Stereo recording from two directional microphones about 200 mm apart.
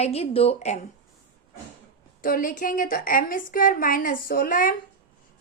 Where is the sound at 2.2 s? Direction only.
45° left (ahead or behind).